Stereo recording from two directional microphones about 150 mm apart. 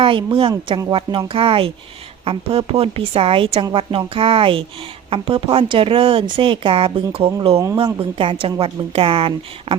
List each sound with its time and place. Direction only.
0.0 s a woman's voice: 35° right (ahead or behind)